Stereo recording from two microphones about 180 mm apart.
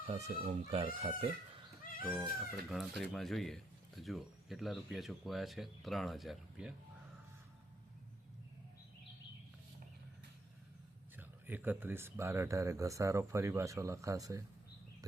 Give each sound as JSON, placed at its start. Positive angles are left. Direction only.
{"t": 0.1, "sound": "speech", "side_deg": -35}
{"t": 2.0, "sound": "speech", "side_deg": -5}
{"t": 11.2, "sound": "speech", "side_deg": -10}